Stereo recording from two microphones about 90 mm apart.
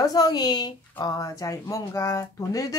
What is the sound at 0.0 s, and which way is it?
Speech, 45° left (ahead or behind).